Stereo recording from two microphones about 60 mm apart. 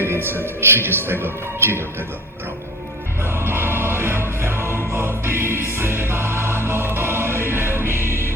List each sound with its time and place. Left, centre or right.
0.0 s a man's voice: right
3.2 s music: right